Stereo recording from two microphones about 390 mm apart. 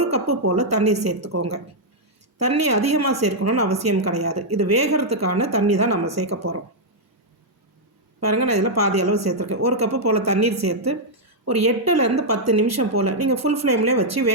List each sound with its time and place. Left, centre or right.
0.0 s a woman's voice: right
8.3 s a woman's voice: right